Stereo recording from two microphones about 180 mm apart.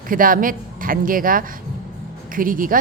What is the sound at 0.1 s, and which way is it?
A woman's voice, 50° right (ahead or behind).